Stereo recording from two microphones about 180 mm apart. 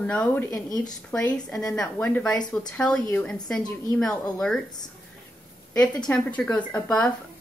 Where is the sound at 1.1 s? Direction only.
5° left (ahead or behind).